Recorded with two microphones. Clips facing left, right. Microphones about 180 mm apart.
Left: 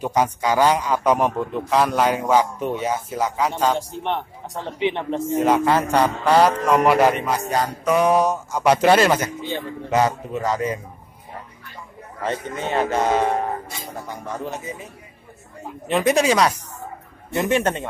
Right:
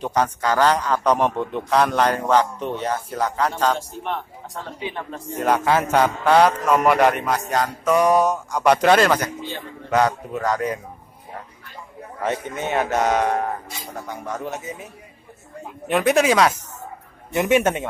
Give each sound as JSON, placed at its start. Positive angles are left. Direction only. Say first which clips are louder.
{"t": 0.0, "sound": "a man's voice", "louder": "left 1 dB", "side_deg": 10}
{"t": 4.7, "sound": "a man's voice", "louder": "left 10 dB", "side_deg": 20}
{"t": 5.4, "sound": "a man's voice", "louder": "even", "side_deg": 0}
{"t": 12.2, "sound": "a man's voice", "louder": "right 1 dB", "side_deg": -10}
{"t": 14.3, "sound": "a man's voice", "louder": "even", "side_deg": 0}
{"t": 15.9, "sound": "a man's voice", "louder": "even", "side_deg": -5}
{"t": 17.3, "sound": "a man's voice", "louder": "right 2 dB", "side_deg": -15}